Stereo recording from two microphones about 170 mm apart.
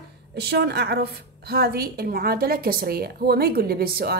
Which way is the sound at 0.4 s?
75° right (ahead or behind).